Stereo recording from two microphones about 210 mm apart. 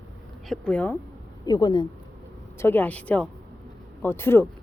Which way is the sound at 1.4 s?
20° left (ahead or behind).